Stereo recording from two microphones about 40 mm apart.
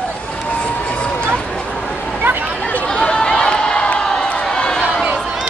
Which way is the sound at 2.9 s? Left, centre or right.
Centre.